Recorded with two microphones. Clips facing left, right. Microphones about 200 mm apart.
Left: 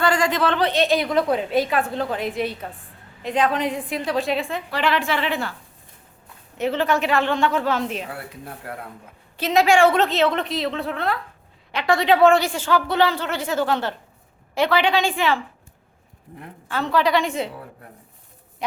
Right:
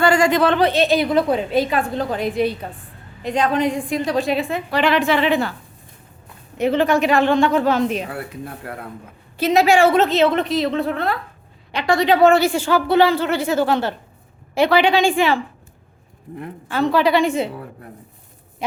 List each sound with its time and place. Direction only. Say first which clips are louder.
0.0 s a woman's voice: right 5 dB; 10° right (ahead or behind)
4.7 s speech: right 5 dB; 15° right (ahead or behind)
6.6 s speech: right 5 dB; 15° right (ahead or behind)
9.4 s a woman's voice: right 2 dB; 5° right (ahead or behind)
16.6 s speech: right 4 dB; 10° right (ahead or behind)